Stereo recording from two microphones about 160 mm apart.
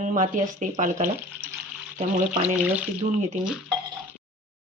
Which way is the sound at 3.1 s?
50° right (ahead or behind).